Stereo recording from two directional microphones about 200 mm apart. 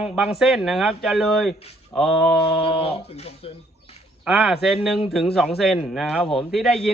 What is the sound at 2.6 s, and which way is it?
Speech, 30° left (ahead or behind).